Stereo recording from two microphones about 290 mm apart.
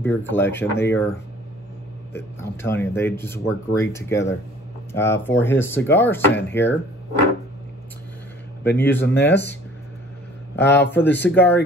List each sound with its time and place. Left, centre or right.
0.0 s speech: centre
2.1 s speech: centre
8.7 s speech: centre
10.5 s a sound: left
10.8 s speech: centre
11.1 s speech: left
11.3 s speech: centre